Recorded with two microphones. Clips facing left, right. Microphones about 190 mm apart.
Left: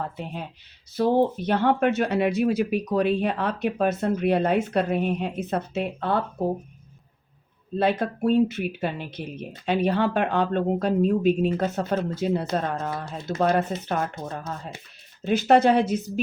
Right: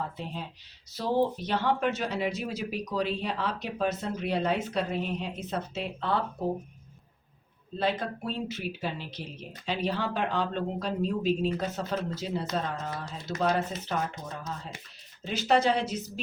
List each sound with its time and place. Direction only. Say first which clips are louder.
0.0 s speech: left 4 dB; 55° left (ahead or behind)
7.8 s speech: left 7 dB; 55° left (ahead or behind)